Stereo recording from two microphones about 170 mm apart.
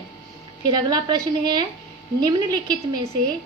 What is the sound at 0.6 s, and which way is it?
A woman's voice, 25° right (ahead or behind).